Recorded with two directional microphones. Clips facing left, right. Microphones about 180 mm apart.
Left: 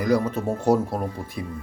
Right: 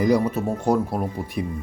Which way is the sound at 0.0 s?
20° right (ahead or behind).